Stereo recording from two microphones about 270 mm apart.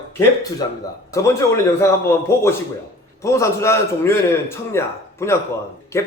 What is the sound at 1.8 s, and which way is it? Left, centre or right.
Speech, centre.